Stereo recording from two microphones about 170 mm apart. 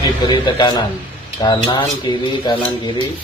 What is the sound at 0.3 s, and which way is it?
Speech, 25° left (ahead or behind).